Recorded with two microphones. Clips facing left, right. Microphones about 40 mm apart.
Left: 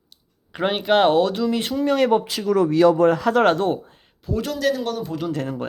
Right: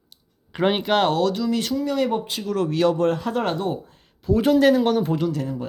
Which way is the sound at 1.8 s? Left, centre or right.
Left.